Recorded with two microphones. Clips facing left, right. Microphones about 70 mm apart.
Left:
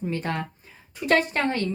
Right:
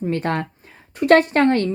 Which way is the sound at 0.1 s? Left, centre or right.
Right.